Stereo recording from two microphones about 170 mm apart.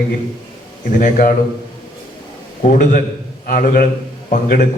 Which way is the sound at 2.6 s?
55° left (ahead or behind).